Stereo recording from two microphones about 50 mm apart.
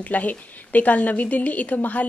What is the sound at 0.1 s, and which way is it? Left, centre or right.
A woman's voice, left.